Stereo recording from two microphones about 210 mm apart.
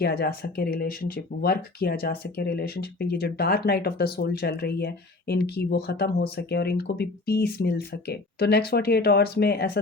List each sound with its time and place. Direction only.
0.0 s speech: 45° left (ahead or behind)